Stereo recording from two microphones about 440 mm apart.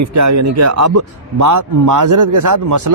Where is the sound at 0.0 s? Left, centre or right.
Right.